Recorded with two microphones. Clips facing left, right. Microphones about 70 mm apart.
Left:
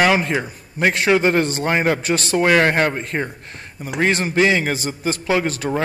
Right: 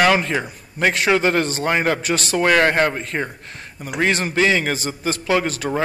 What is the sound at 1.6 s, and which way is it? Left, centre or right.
Speech, centre.